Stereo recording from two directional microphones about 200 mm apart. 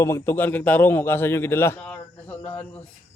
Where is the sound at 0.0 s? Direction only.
10° left (ahead or behind).